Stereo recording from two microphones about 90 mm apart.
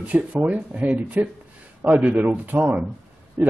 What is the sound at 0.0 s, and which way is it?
Speech, 15° right (ahead or behind).